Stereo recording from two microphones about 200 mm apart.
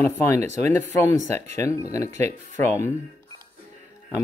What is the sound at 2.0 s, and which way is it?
Speech, 35° right (ahead or behind).